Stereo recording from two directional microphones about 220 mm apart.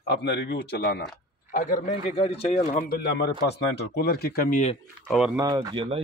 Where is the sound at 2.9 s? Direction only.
50° left (ahead or behind).